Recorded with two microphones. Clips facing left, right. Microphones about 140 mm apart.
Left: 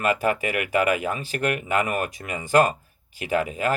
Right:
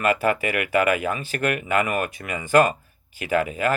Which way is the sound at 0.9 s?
35° left (ahead or behind).